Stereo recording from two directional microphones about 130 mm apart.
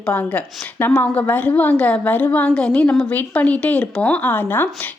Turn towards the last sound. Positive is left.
turn(degrees=15)  # may be behind; listen again after turning